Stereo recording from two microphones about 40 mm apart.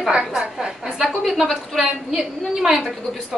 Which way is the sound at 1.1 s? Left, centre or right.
Centre.